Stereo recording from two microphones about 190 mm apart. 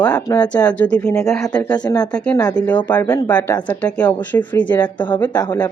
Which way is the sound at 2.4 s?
20° left (ahead or behind).